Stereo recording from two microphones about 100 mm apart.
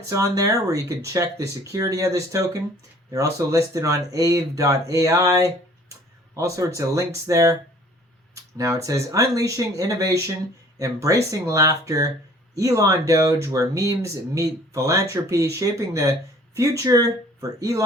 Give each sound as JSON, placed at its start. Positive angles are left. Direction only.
{"t": 0.1, "sound": "speech", "side_deg": -35}